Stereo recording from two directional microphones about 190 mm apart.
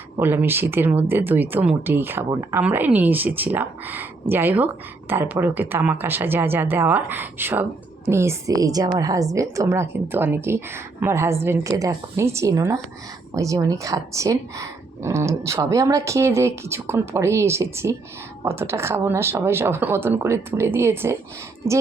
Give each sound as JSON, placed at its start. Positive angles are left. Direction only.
{"t": 0.2, "sound": "speech", "side_deg": -10}